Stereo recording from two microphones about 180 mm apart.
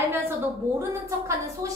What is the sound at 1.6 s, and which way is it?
Speech, 20° right (ahead or behind).